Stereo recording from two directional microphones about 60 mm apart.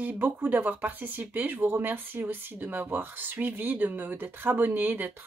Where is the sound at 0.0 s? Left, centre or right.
Right.